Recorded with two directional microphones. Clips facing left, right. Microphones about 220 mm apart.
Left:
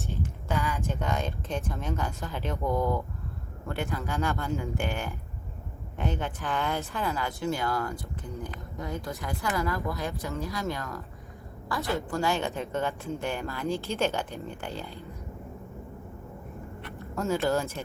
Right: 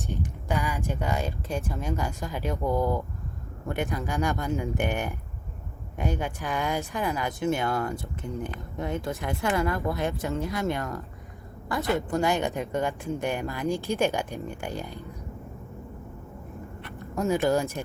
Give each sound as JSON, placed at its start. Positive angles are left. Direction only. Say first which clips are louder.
{"t": 0.1, "sound": "a woman's voice", "louder": "right 2 dB", "side_deg": -15}
{"t": 17.2, "sound": "a woman's voice", "louder": "right 3 dB", "side_deg": -15}